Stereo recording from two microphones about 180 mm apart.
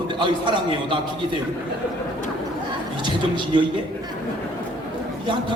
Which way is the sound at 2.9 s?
25° right (ahead or behind).